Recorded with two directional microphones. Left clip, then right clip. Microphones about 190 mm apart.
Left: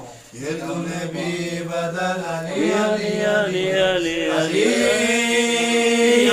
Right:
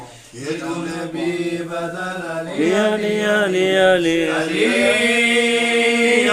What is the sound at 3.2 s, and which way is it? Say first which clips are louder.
Mantra: right 3 dB; 60° right (ahead or behind).